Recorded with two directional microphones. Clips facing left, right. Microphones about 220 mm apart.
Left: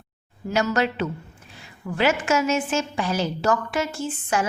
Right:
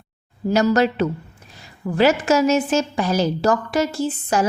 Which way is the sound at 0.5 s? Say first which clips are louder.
Right 6 dB; 40° right (ahead or behind).